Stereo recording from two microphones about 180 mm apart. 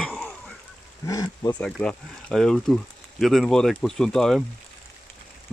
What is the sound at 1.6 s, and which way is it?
Speech, 5° left (ahead or behind).